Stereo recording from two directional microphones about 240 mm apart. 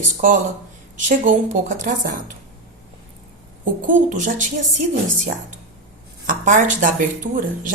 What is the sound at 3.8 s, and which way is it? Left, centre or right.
Speech, right.